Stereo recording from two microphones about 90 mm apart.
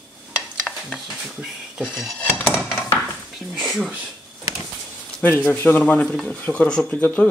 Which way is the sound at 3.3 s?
Centre (ahead or behind).